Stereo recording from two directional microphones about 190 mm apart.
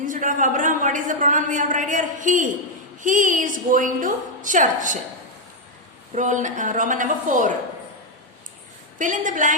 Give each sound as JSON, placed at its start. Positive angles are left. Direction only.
{"t": 0.0, "sound": "a woman's voice", "side_deg": -45}
{"t": 6.1, "sound": "a woman's voice", "side_deg": -40}
{"t": 9.0, "sound": "a woman's voice", "side_deg": -40}